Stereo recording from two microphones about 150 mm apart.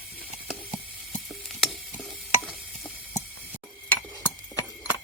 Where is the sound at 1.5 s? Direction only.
Centre (ahead or behind).